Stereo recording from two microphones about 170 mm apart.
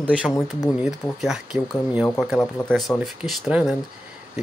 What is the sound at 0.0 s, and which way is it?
Speech, 5° right (ahead or behind).